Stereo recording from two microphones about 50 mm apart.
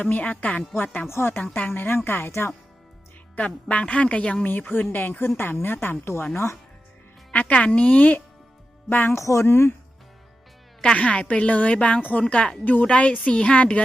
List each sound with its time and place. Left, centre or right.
0.0 s a woman's voice: left
1.1 s speech: left
1.5 s a woman's voice: left
2.3 s speech: left
3.3 s a woman's voice: left
4.4 s a woman's voice: left
6.3 s speech: left
7.3 s a woman's voice: left
8.9 s a woman's voice: left
9.1 s speech: left
10.9 s a woman's voice: left
12.9 s a woman's voice: left